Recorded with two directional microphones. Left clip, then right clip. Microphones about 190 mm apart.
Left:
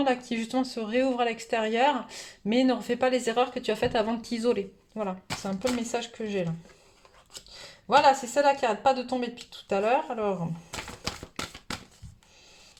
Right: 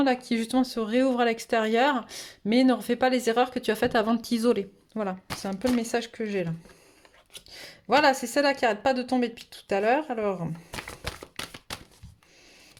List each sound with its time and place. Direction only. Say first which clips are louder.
0.0 s speech: right 2 dB; 30° right (ahead or behind)
7.5 s speech: left 1 dB; 50° right (ahead or behind)